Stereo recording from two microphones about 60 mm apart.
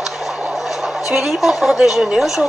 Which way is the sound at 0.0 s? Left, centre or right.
Centre.